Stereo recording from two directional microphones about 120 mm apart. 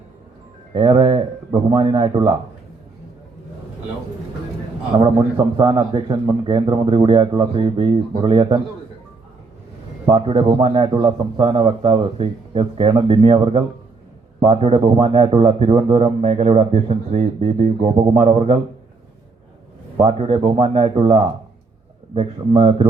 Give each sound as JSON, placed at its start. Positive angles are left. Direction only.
{"t": 0.7, "sound": "a man's voice", "side_deg": -45}
{"t": 4.9, "sound": "a man's voice", "side_deg": -35}
{"t": 10.1, "sound": "a man's voice", "side_deg": -45}
{"t": 18.3, "sound": "a man's voice", "side_deg": -50}
{"t": 20.0, "sound": "a man's voice", "side_deg": -55}